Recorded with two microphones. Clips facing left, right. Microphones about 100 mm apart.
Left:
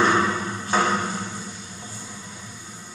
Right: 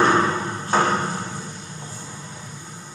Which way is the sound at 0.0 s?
40° right (ahead or behind).